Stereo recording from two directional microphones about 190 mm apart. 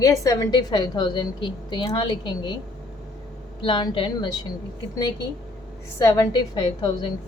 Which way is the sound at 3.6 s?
25° left (ahead or behind).